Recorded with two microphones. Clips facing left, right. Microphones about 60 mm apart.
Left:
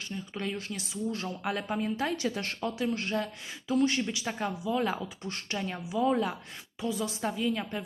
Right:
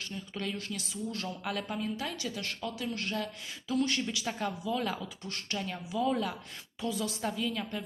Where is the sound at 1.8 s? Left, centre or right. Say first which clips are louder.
Left 5 dB; left.